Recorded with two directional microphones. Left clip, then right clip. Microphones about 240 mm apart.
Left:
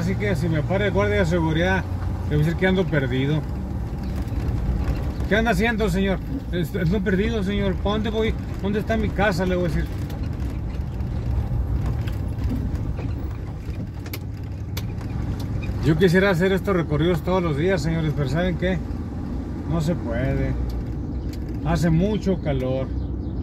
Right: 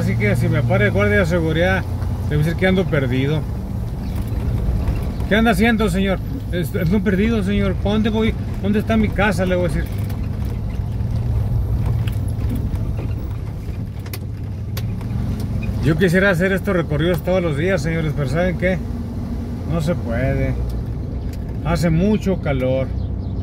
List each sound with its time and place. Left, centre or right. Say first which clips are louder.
0.0 s speech: right 4 dB; centre
5.3 s speech: right 4 dB; right
15.9 s speech: right 2 dB; centre
21.6 s speech: right 4 dB; right